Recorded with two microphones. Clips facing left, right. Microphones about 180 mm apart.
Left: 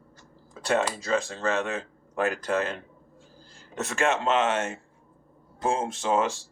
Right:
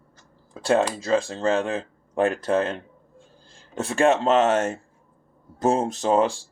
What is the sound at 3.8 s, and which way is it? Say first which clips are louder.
Speech: right 6 dB; 30° right (ahead or behind).